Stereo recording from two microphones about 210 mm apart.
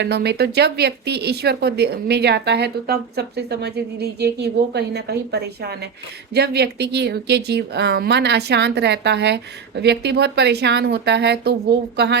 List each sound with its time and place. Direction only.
0.0 s speech: 50° right (ahead or behind)